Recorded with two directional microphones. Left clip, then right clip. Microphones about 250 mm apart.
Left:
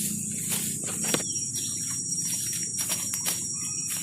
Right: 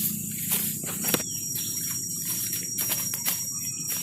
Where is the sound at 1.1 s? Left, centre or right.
Right.